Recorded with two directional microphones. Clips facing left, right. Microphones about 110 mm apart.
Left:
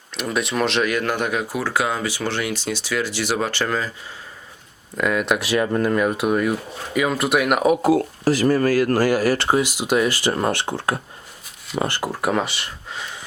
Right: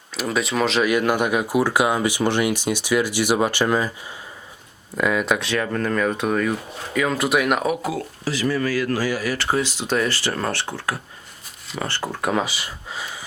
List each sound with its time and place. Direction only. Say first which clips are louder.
0.2 s speech: even; centre (ahead or behind)
4.9 s speech: even; centre (ahead or behind)
7.8 s speech: left 9 dB; 45° left (ahead or behind)
9.4 s speech: left 3 dB; 15° left (ahead or behind); by 13.1 s 5° right (ahead or behind)